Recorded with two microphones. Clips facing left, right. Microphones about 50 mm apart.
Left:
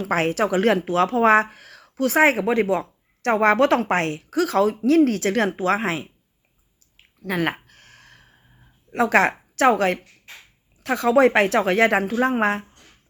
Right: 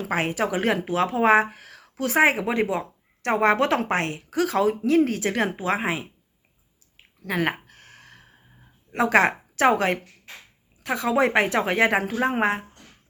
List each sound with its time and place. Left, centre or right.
0.1 s a woman's voice: centre
2.4 s a woman's voice: centre
4.3 s a woman's voice: right; by 6.1 s centre
7.7 s a sound: right
9.0 s a woman's voice: centre
10.8 s a woman's voice: centre
11.6 s a woman's voice: centre